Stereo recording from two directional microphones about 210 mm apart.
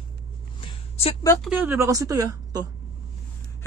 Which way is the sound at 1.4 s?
Centre (ahead or behind).